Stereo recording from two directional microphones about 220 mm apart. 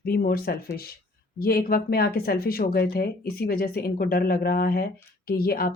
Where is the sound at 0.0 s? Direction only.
45° left (ahead or behind).